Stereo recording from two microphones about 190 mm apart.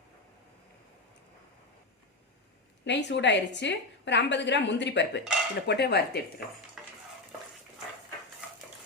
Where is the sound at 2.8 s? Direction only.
65° left (ahead or behind).